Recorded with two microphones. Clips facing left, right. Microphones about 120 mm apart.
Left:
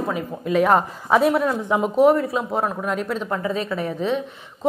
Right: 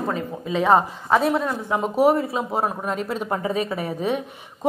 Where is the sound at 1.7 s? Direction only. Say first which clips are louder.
Left 3 dB; 10° left (ahead or behind).